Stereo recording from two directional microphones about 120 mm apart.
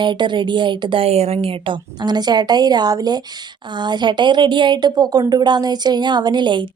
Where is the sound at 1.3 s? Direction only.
45° right (ahead or behind).